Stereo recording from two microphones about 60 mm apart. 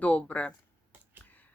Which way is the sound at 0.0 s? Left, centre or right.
Left.